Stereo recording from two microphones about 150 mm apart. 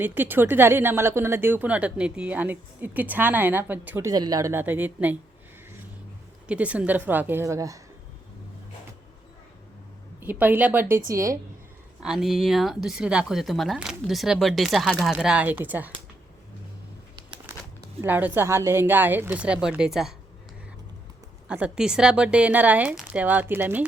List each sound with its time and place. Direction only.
0.0 s speech: 15° right (ahead or behind)
4.1 s speech: 25° right (ahead or behind)
6.5 s speech: 10° right (ahead or behind)
10.2 s a woman's voice: 10° right (ahead or behind)
12.0 s speech: 5° right (ahead or behind)
18.0 s speech: 10° right (ahead or behind)
21.4 s speech: 5° right (ahead or behind)